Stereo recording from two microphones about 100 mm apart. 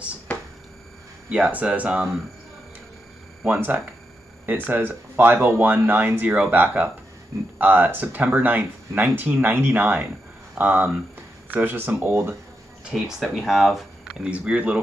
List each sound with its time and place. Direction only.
1.3 s speech: 15° right (ahead or behind)
3.4 s speech: 20° right (ahead or behind)
12.9 s speech: centre (ahead or behind)